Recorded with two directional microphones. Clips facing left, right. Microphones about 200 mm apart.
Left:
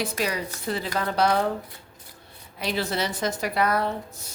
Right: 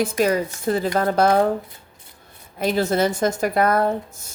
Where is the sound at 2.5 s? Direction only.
50° right (ahead or behind).